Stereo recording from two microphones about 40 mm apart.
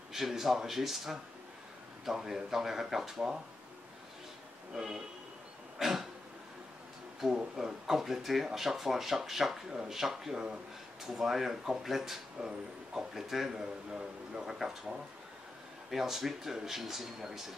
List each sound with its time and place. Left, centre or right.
0.1 s speech: centre
2.2 s speech: centre
4.7 s speech: centre
5.8 s a sound: centre
7.2 s speech: centre
12.4 s speech: centre
13.1 s speech: centre